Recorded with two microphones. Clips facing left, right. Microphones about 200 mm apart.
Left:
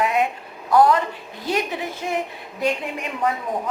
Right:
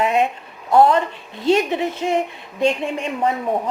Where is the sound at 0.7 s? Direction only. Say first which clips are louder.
Right 2 dB; 25° right (ahead or behind).